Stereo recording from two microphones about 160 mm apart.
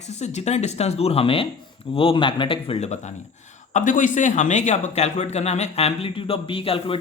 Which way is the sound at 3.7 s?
55° left (ahead or behind).